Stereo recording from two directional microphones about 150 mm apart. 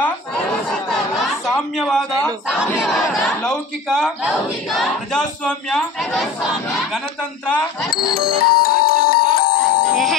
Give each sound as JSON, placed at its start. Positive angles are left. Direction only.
{"t": 0.0, "sound": "chatter", "side_deg": 5}
{"t": 2.8, "sound": "a man's voice", "side_deg": 0}
{"t": 8.2, "sound": "music", "side_deg": 85}